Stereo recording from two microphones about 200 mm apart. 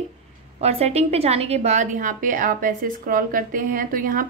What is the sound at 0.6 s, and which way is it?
A woman's voice, 30° right (ahead or behind).